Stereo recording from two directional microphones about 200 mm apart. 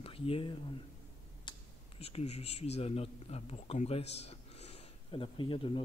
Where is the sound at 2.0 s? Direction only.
30° left (ahead or behind).